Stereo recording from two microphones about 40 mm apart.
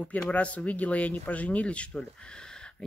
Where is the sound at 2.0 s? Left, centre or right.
Left.